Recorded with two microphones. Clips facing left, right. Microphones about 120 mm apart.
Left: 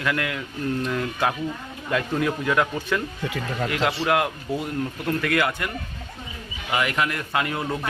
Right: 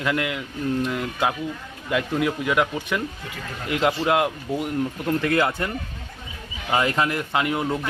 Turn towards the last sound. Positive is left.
turn(degrees=-20)  # may be behind; listen again after turning